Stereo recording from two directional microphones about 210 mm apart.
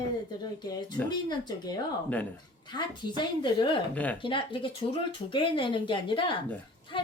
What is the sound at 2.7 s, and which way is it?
A woman's voice, 20° left (ahead or behind).